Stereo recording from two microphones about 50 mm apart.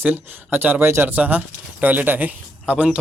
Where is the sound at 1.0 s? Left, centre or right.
Right.